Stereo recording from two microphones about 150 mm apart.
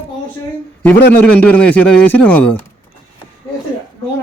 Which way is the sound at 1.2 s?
10° left (ahead or behind).